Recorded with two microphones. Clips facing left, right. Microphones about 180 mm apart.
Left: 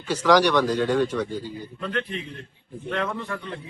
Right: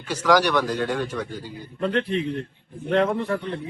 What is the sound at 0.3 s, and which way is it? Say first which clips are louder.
Speech: left 1 dB; 10° right (ahead or behind).